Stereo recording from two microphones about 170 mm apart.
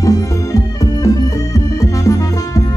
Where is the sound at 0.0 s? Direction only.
20° left (ahead or behind).